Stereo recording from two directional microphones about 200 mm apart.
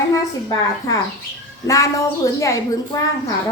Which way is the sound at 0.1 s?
15° left (ahead or behind).